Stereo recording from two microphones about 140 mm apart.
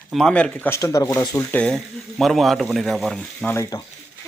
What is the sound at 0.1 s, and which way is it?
Speech, 5° left (ahead or behind).